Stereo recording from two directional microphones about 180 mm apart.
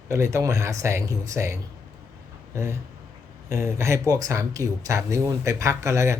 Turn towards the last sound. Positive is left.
turn(degrees=-15)  # may be behind; listen again after turning